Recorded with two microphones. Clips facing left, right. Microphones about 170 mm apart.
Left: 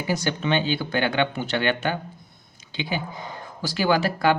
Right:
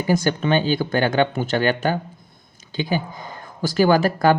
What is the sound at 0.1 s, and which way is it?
Speech, 50° right (ahead or behind).